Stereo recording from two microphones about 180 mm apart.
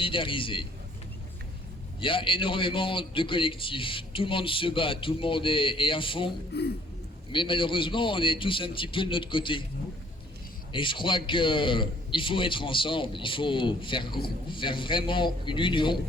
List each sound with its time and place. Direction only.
0.0 s a man's voice: 30° left (ahead or behind)
2.0 s a man's voice: 30° left (ahead or behind)
6.5 s speech: 65° left (ahead or behind)
7.3 s a man's voice: 30° left (ahead or behind)
10.7 s a man's voice: 30° left (ahead or behind)